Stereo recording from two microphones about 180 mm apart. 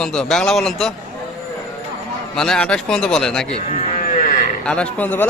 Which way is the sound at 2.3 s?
5° left (ahead or behind).